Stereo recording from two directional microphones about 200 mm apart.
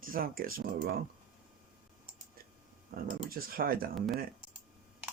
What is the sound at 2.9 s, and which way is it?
Speech, 45° right (ahead or behind).